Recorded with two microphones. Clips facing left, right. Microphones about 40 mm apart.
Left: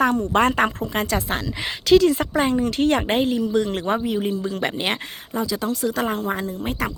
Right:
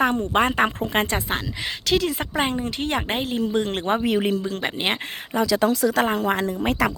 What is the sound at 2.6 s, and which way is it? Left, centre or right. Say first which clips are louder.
Speech: left 6 dB; right.